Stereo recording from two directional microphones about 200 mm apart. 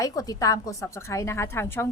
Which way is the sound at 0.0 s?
15° left (ahead or behind).